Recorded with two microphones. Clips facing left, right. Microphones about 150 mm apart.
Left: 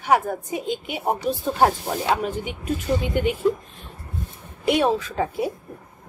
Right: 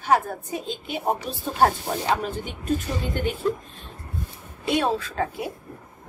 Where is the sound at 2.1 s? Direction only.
10° left (ahead or behind).